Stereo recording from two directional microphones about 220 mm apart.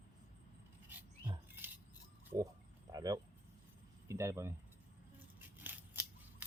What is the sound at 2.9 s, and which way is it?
Keys jangling, 15° right (ahead or behind).